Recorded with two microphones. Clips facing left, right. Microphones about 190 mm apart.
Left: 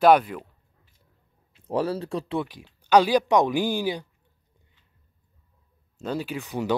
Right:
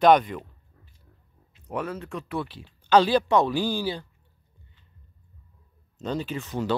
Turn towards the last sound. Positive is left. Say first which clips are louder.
# left 1 dB
turn(degrees=15)  # may be behind; listen again after turning